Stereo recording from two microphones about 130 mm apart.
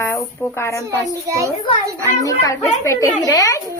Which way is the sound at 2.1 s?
25° left (ahead or behind).